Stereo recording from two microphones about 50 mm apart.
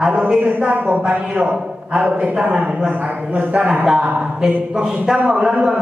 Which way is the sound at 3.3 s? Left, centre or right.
Right.